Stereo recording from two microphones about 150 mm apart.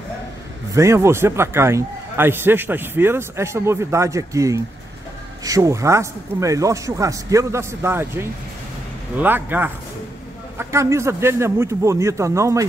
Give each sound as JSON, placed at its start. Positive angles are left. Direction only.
{"t": 0.7, "sound": "a man's voice", "side_deg": -20}